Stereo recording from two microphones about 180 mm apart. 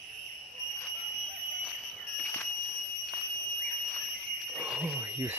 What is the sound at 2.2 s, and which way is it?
Fire alarm, 5° left (ahead or behind).